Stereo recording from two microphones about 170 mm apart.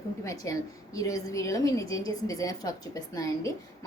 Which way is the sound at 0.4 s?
20° left (ahead or behind).